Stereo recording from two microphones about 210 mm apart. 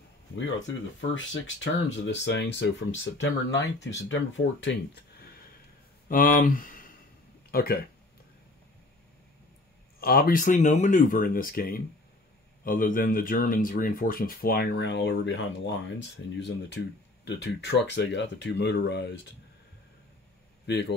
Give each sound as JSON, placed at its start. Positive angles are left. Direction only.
{"t": 1.1, "sound": "speech", "side_deg": 65}
{"t": 6.0, "sound": "speech", "side_deg": 40}
{"t": 9.9, "sound": "speech", "side_deg": 45}
{"t": 20.6, "sound": "speech", "side_deg": 55}